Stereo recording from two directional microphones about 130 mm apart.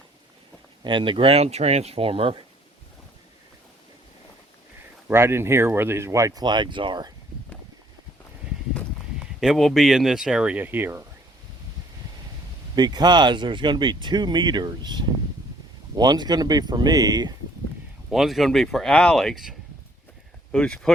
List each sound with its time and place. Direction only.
0.9 s speech: 40° right (ahead or behind)
5.0 s speech: 20° right (ahead or behind); by 7.1 s 35° right (ahead or behind)
9.4 s speech: centre (ahead or behind); by 11.0 s 15° right (ahead or behind)
12.7 s speech: 35° right (ahead or behind)
18.1 s speech: centre (ahead or behind)